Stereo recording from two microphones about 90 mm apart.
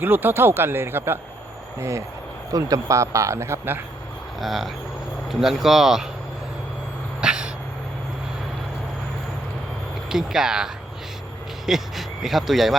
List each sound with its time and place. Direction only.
0.0 s a man's voice: 20° right (ahead or behind)
4.4 s speech: centre (ahead or behind)
7.2 s cat: 10° right (ahead or behind)
10.1 s speech: 5° right (ahead or behind)